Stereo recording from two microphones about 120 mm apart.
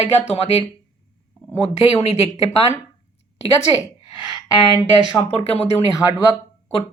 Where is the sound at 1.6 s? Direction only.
55° left (ahead or behind).